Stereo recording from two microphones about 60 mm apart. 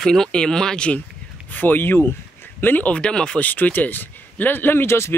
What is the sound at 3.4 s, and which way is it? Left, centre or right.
Speech, left.